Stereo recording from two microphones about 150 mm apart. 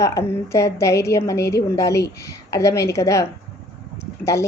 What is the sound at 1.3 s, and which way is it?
Speech, 90° left.